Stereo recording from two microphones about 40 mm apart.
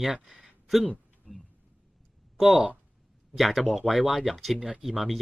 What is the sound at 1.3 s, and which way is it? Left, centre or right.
Speech, centre.